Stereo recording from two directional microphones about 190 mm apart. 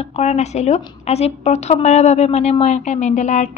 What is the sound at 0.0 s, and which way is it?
A woman's voice, 35° left (ahead or behind).